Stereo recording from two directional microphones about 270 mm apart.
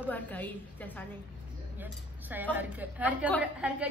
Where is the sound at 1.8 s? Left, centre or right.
Centre.